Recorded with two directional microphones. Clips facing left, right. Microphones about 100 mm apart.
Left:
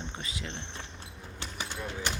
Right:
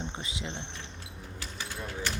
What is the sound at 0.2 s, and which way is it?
Speech, 25° right (ahead or behind).